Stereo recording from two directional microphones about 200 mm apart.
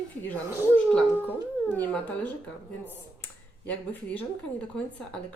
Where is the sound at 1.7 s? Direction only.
5° left (ahead or behind).